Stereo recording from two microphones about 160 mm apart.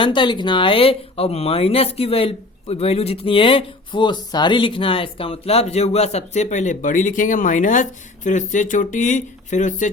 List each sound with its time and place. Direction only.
0.0 s speech: 30° left (ahead or behind); by 9.9 s 50° left (ahead or behind)